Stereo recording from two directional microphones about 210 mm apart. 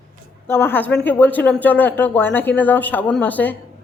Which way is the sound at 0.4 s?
10° left (ahead or behind).